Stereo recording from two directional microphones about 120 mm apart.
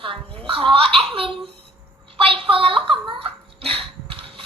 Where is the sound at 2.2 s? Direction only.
50° right (ahead or behind).